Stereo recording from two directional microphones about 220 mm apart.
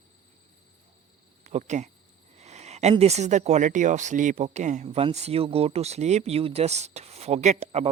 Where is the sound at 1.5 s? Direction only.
30° right (ahead or behind).